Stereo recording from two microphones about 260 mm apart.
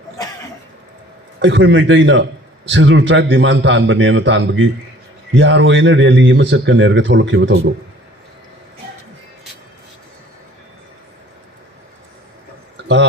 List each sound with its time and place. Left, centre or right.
1.4 s speech: right